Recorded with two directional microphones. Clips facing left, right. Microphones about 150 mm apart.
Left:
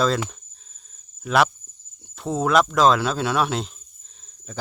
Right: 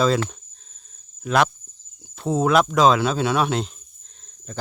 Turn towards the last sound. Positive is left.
turn(degrees=0)  # may be behind; listen again after turning